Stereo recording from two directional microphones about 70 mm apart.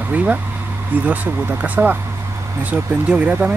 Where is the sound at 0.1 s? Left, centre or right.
Right.